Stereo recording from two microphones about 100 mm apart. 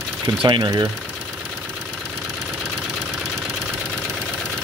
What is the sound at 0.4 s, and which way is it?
Speech, 55° right (ahead or behind).